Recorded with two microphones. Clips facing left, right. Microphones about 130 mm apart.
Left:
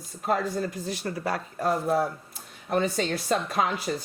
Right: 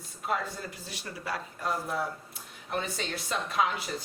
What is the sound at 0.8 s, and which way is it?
Speech, 50° left (ahead or behind).